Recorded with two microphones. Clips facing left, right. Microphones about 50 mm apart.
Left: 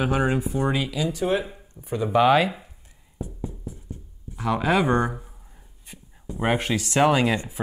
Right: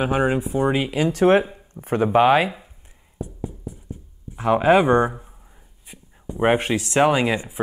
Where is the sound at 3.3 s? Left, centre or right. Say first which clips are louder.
Right 2 dB; centre.